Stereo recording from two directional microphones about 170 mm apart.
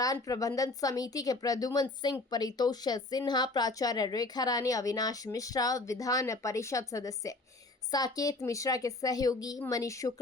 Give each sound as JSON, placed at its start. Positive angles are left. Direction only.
{"t": 0.0, "sound": "speech", "side_deg": 20}